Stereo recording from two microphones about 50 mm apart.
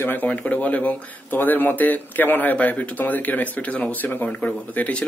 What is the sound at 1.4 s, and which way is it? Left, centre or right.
Speech, left.